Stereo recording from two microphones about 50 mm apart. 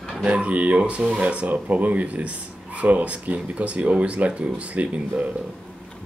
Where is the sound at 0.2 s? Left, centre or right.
Right.